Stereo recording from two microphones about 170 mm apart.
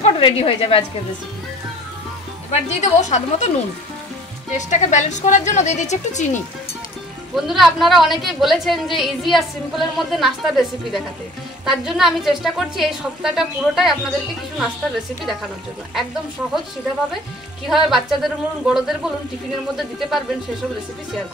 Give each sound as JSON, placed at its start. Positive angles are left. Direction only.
{"t": 0.0, "sound": "a woman's voice", "side_deg": 30}
{"t": 2.5, "sound": "a woman's voice", "side_deg": 45}
{"t": 4.6, "sound": "a woman's voice", "side_deg": 45}
{"t": 7.3, "sound": "a woman's voice", "side_deg": 0}
{"t": 17.6, "sound": "a woman's voice", "side_deg": 0}